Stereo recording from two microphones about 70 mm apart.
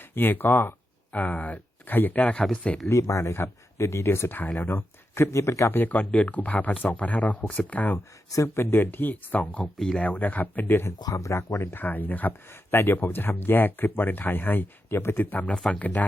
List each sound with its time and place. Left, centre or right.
0.1 s speech: left; by 2.9 s centre
2.9 s speech: left
5.9 s speech: centre
7.9 s speech: left
9.7 s speech: centre
10.0 s speech: left
11.0 s speech: left
11.6 s speech: left
15.5 s speech: centre
15.8 s speech: left